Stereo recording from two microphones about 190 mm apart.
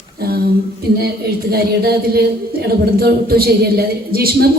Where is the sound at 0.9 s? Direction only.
55° right (ahead or behind).